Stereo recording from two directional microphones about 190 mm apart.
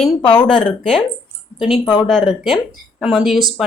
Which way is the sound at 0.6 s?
5° left (ahead or behind).